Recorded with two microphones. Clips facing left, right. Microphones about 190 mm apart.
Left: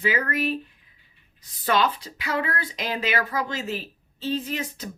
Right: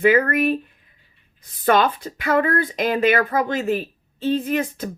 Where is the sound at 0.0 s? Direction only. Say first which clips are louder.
Right 9 dB; 55° right (ahead or behind).